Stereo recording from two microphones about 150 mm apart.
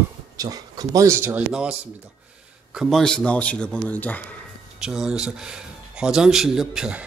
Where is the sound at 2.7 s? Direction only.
5° left (ahead or behind).